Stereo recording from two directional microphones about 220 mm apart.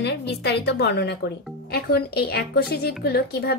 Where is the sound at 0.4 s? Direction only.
50° left (ahead or behind).